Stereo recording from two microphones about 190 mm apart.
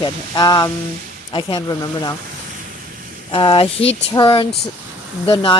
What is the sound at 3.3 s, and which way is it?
Speech, 25° left (ahead or behind).